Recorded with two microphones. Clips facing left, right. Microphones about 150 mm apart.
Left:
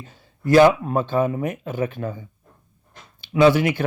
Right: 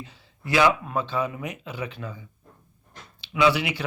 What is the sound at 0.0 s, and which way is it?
Speech, 45° left (ahead or behind).